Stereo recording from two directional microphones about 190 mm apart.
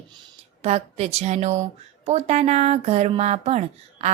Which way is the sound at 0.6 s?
35° right (ahead or behind).